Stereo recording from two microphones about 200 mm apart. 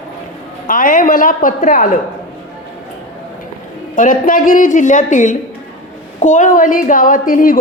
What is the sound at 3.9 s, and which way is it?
A man's voice, 45° left (ahead or behind).